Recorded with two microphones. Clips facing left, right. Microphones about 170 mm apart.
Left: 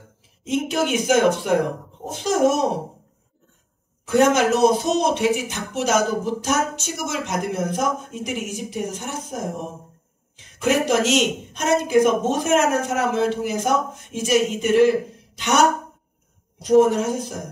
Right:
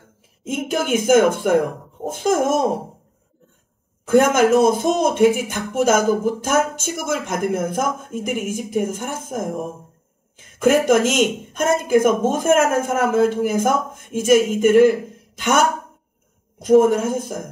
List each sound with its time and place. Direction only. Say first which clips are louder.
0.4 s speech: left 1 dB; 50° right (ahead or behind)
4.0 s speech: right 2 dB; 50° right (ahead or behind)
16.8 s speech: right 2 dB; 50° right (ahead or behind)